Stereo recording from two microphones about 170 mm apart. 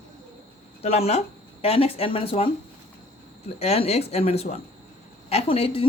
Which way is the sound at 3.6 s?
35° left (ahead or behind).